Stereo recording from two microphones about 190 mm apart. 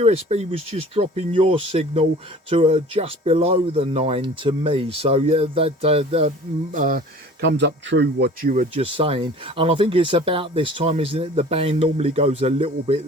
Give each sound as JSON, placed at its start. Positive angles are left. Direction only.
{"t": 0.0, "sound": "speech", "side_deg": -35}
{"t": 6.7, "sound": "speech", "side_deg": -45}
{"t": 7.4, "sound": "speech", "side_deg": -65}
{"t": 8.7, "sound": "speech", "side_deg": -30}